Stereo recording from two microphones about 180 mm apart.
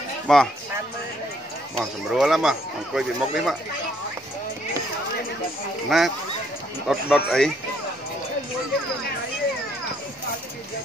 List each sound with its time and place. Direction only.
0.3 s speech: centre (ahead or behind)
1.8 s speech: centre (ahead or behind)
5.9 s speech: centre (ahead or behind)